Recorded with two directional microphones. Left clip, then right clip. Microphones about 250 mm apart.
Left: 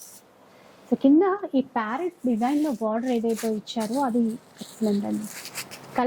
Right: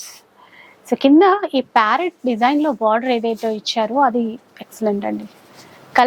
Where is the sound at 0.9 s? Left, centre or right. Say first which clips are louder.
Right 8 dB; centre.